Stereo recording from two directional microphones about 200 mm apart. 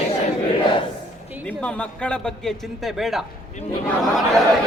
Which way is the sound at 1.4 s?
5° left (ahead or behind).